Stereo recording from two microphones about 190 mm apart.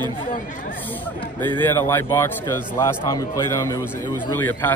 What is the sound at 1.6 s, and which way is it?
A man's voice, 15° left (ahead or behind).